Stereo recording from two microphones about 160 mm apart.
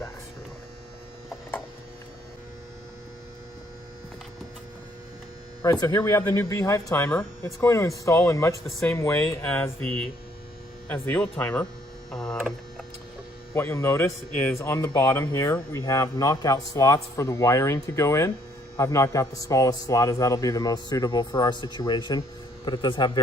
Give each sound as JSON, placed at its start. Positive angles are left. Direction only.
{"t": 5.8, "sound": "a man's voice", "side_deg": 20}
{"t": 9.5, "sound": "a man's voice", "side_deg": 5}
{"t": 12.1, "sound": "a sound", "side_deg": 5}
{"t": 13.5, "sound": "a man's voice", "side_deg": 15}